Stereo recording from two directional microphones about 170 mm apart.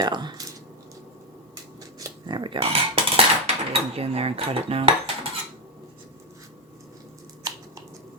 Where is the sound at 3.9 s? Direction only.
35° right (ahead or behind).